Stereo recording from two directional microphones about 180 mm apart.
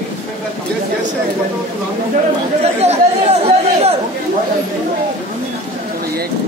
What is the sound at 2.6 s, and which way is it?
Speech, 35° right (ahead or behind).